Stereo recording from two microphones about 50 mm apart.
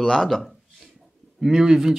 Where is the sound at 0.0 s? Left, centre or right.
Centre.